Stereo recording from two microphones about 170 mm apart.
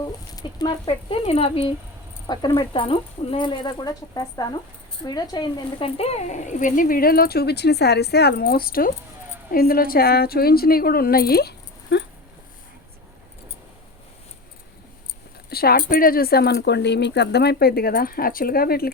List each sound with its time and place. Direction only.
0.0 s speech: 20° left (ahead or behind)
2.2 s speech: 25° left (ahead or behind)
6.0 s speech: 40° left (ahead or behind); by 12.0 s 80° left
15.4 s speech: 65° left (ahead or behind)